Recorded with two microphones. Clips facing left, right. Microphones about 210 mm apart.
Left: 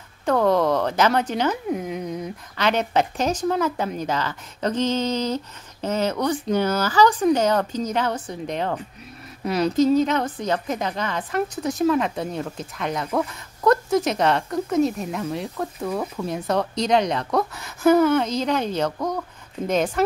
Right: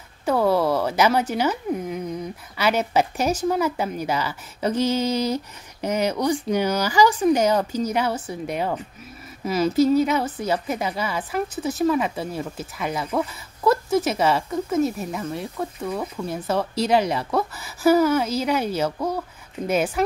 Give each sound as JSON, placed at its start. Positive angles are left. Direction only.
{"t": 0.2, "sound": "a woman's voice", "side_deg": -5}